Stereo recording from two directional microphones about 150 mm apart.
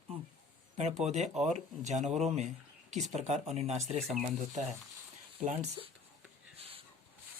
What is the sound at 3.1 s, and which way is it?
Speech, 50° right (ahead or behind).